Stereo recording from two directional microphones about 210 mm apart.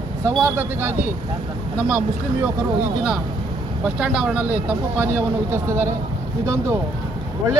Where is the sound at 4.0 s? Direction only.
5° right (ahead or behind).